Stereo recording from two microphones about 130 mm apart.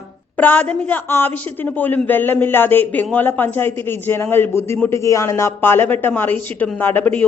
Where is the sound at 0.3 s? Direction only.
10° left (ahead or behind).